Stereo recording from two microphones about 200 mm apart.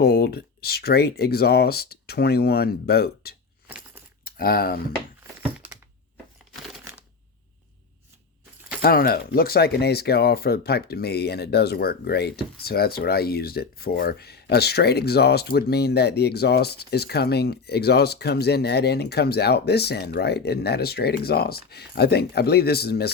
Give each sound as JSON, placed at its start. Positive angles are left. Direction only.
{"t": 0.0, "sound": "speech", "side_deg": 50}
{"t": 4.2, "sound": "keys jangling", "side_deg": 50}
{"t": 6.7, "sound": "a sound", "side_deg": -5}
{"t": 8.8, "sound": "speech", "side_deg": 45}